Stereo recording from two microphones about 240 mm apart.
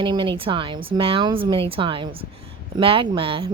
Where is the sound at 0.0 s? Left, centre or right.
Right.